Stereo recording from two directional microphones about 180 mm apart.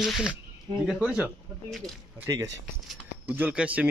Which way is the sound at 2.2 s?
15° right (ahead or behind).